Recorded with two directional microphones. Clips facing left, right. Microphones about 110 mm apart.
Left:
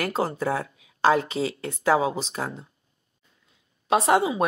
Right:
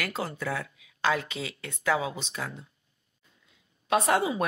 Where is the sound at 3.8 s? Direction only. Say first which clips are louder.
Left 4 dB; 30° left (ahead or behind).